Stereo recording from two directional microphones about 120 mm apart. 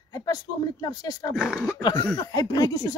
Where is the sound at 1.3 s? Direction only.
5° right (ahead or behind).